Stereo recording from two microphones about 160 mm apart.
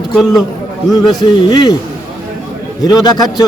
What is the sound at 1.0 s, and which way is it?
Speech, 25° left (ahead or behind).